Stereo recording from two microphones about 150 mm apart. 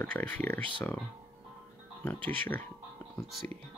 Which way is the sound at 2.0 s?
10° left (ahead or behind).